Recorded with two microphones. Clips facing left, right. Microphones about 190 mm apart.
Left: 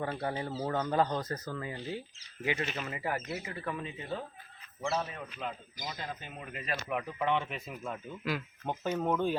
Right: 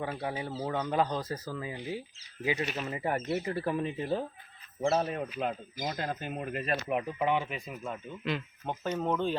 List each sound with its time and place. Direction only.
0.0 s speech: 5° right (ahead or behind)
2.6 s speech: centre (ahead or behind)
2.9 s speech: 25° right (ahead or behind)
4.8 s speech: 50° right (ahead or behind)
6.8 s speech: 25° right (ahead or behind)
7.3 s speech: 5° right (ahead or behind); by 9.4 s 10° left (ahead or behind)